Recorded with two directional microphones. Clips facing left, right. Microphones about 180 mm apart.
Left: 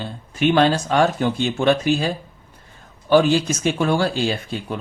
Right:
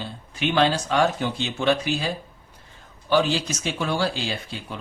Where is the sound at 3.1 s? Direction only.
50° left (ahead or behind).